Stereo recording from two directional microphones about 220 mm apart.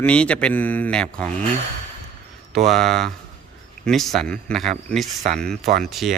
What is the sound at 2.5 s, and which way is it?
Speech, centre (ahead or behind).